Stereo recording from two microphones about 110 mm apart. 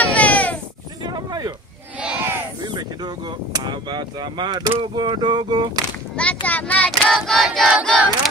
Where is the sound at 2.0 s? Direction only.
15° right (ahead or behind).